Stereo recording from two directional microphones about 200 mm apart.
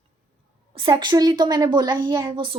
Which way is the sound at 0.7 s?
25° right (ahead or behind).